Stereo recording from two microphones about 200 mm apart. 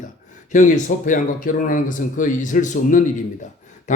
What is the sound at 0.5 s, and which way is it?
A man's voice, 40° left (ahead or behind).